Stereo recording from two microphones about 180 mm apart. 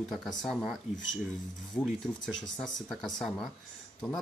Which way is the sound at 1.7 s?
5° left (ahead or behind).